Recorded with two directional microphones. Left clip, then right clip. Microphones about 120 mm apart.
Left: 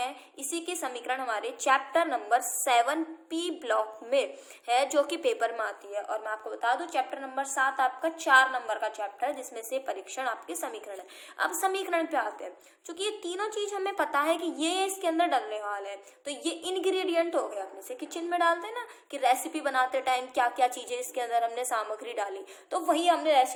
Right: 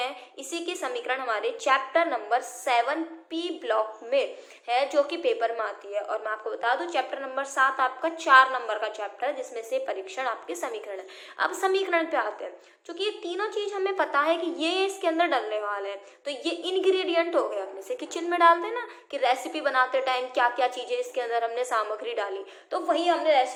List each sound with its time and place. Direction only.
0.5 s a woman's voice: 35° left (ahead or behind); by 5.6 s 55° left (ahead or behind)
5.6 s a woman's voice: 35° left (ahead or behind)
22.7 s a woman's voice: 55° left (ahead or behind)